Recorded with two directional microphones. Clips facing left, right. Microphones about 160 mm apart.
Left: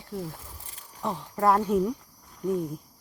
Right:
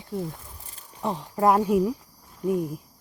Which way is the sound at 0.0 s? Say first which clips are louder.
Right 4 dB; 25° right (ahead or behind).